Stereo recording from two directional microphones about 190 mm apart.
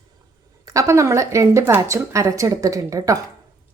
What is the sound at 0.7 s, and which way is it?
Speech, 15° right (ahead or behind).